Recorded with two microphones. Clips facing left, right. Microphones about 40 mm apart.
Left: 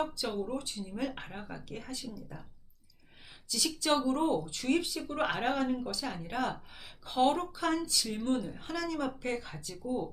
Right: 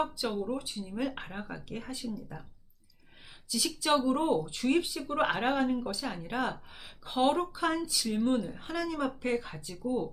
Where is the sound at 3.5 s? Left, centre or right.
Centre.